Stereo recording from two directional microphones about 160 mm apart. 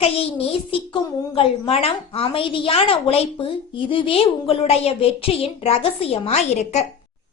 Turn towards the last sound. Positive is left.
turn(degrees=45)  # may be behind; listen again after turning